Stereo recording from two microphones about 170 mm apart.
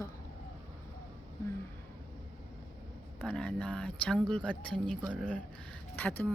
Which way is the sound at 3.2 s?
5° left (ahead or behind).